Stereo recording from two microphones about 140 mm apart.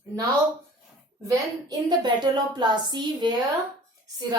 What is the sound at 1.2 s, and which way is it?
A woman's voice, 30° right (ahead or behind).